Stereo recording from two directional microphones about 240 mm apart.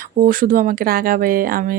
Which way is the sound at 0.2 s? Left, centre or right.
Right.